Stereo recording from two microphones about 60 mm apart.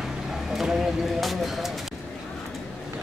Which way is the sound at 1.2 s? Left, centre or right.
Centre.